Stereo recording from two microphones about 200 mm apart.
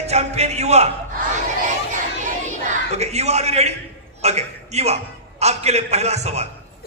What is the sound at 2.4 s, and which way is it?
A man's voice, 35° right (ahead or behind).